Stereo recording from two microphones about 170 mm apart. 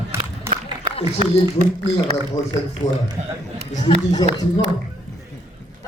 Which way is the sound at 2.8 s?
40° left (ahead or behind).